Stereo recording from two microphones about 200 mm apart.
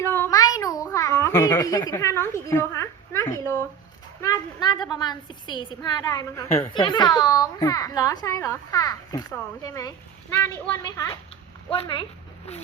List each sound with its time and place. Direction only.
0.0 s a sound: 10° left (ahead or behind)
4.2 s a child's voice: 20° left (ahead or behind)
6.5 s a child's voice: 25° left (ahead or behind)